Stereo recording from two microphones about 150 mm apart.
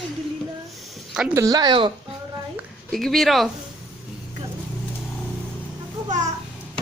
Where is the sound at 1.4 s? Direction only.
25° right (ahead or behind).